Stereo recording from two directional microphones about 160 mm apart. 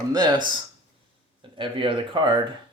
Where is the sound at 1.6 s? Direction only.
30° right (ahead or behind).